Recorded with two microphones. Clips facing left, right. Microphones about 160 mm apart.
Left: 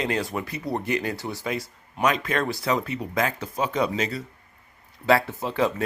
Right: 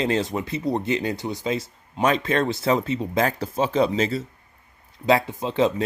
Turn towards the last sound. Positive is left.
turn(degrees=-20)  # may be behind; listen again after turning